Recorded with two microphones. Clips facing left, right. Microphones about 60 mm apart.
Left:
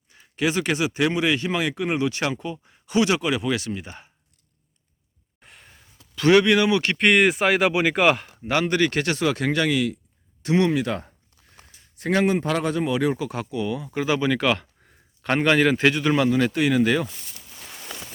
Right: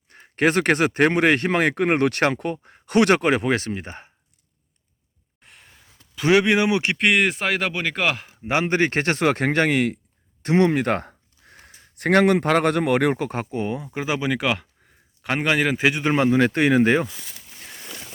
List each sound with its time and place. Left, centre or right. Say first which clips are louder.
0.1 s speech: right 4 dB; right
5.4 s sigh: left 1 dB; centre
6.1 s speech: left 1 dB; centre
6.9 s speech: left 2 dB; centre
8.4 s speech: right 1 dB; right
11.0 s a sound: right 7 dB; right
11.9 s speech: right 4 dB; right
13.8 s speech: left 2 dB; centre
14.6 s a sound: left 1 dB; centre
16.0 s speech: right 2 dB; right
16.5 s speech: right 3 dB; right